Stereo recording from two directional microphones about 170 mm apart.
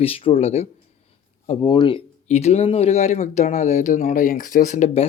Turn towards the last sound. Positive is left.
turn(degrees=45)  # may be behind; listen again after turning